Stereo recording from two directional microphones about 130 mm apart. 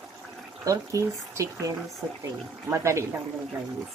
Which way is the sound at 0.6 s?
25° right (ahead or behind).